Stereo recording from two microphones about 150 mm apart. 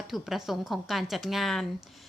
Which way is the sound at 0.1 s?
Centre (ahead or behind).